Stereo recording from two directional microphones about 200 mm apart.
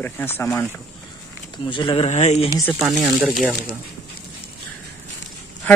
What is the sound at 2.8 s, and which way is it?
Speech, centre (ahead or behind).